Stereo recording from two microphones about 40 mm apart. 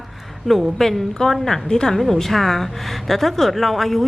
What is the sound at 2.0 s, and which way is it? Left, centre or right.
A woman's voice, centre.